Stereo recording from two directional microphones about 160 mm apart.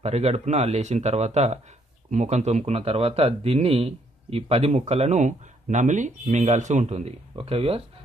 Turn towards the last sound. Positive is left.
turn(degrees=-40)  # may be behind; listen again after turning